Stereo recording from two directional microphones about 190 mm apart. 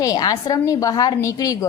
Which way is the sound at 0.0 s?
20° left (ahead or behind).